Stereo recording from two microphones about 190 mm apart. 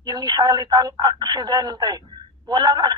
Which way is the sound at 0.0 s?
20° right (ahead or behind).